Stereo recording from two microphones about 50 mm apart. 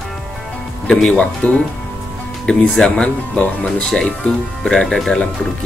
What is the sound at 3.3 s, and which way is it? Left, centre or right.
Speech, left.